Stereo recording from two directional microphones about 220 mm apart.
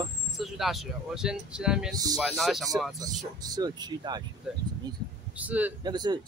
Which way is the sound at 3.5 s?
15° right (ahead or behind).